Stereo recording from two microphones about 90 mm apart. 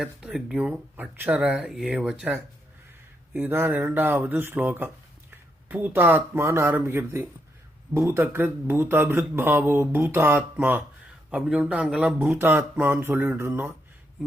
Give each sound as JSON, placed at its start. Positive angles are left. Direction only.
{"t": 0.0, "sound": "a man's voice", "side_deg": -5}
{"t": 3.3, "sound": "a man's voice", "side_deg": -20}
{"t": 11.3, "sound": "a man's voice", "side_deg": -10}
{"t": 12.4, "sound": "a man's voice", "side_deg": -20}